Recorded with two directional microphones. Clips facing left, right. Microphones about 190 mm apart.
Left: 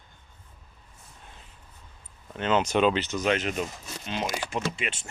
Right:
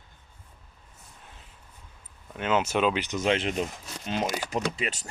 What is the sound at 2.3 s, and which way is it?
Speech, 5° right (ahead or behind).